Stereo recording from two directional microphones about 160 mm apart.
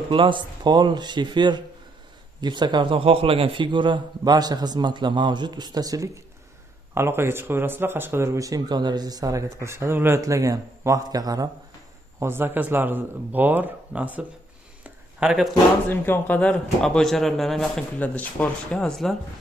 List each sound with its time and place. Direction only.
0.1 s a man's voice: 30° right (ahead or behind); by 14.2 s 10° right (ahead or behind)
14.8 s a sound: 5° right (ahead or behind)
15.9 s speech: 10° left (ahead or behind)